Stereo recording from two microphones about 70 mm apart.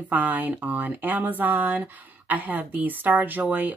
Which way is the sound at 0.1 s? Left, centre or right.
Right.